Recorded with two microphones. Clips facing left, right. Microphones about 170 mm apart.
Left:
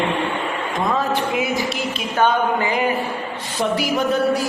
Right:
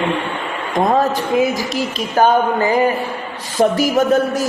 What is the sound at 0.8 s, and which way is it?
A man's voice, 40° right (ahead or behind).